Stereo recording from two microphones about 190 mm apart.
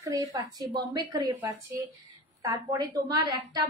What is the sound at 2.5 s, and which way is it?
Speech, 20° right (ahead or behind).